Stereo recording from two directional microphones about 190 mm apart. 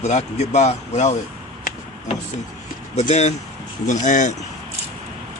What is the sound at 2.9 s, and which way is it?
Speech, 35° left (ahead or behind).